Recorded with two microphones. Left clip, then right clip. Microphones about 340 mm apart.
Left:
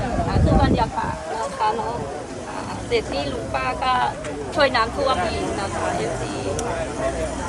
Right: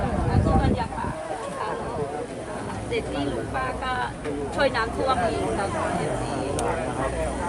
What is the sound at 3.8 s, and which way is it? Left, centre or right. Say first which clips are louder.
Speech: left 7 dB; left.